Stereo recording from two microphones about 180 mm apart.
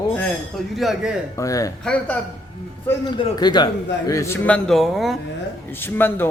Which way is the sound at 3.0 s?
25° left (ahead or behind).